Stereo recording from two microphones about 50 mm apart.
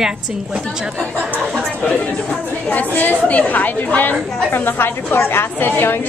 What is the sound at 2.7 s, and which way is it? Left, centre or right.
A woman's voice, left.